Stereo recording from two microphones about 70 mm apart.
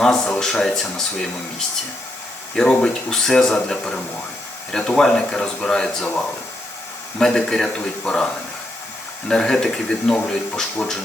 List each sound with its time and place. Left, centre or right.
0.0 s speech: centre
7.2 s speech: centre
9.3 s speech: centre